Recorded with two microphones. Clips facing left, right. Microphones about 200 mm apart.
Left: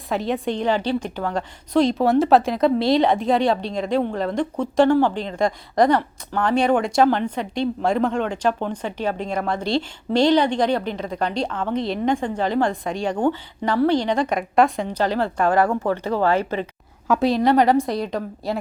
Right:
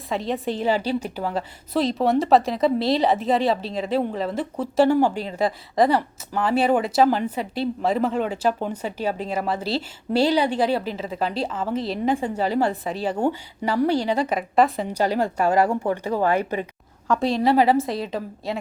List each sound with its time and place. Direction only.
0.1 s speech: centre (ahead or behind); by 16.6 s 15° right (ahead or behind)
17.1 s speech: centre (ahead or behind)